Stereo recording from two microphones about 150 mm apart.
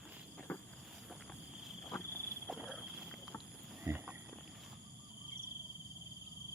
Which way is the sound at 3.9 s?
20° right (ahead or behind).